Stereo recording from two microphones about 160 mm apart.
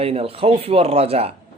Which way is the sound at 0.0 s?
35° right (ahead or behind).